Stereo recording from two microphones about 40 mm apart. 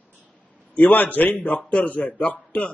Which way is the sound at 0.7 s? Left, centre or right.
Left.